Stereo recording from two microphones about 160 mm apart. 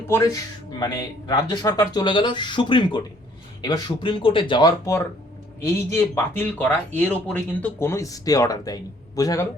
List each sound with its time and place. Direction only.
0.1 s speech: 20° left (ahead or behind)
5.6 s speech: 15° left (ahead or behind)